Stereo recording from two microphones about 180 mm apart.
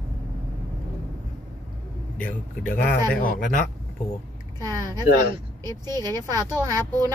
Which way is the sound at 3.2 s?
45° left (ahead or behind).